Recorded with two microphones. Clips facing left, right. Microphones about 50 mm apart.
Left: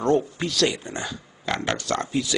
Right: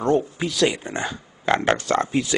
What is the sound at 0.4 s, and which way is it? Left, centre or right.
Speech, centre.